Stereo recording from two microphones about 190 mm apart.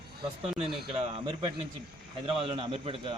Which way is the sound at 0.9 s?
30° right (ahead or behind).